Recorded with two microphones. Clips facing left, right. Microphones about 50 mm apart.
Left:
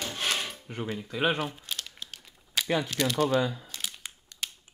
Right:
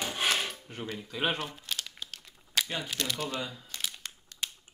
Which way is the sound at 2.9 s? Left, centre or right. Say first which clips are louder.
Left 7 dB; centre.